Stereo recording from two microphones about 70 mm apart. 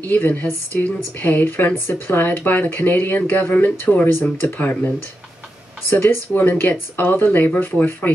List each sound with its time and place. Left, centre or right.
0.0 s speech: left
5.9 s speech: left